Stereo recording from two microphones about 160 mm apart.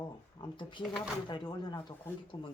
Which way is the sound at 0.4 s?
30° left (ahead or behind).